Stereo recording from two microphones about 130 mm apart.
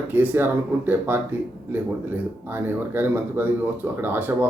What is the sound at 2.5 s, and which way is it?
Speech, 15° right (ahead or behind).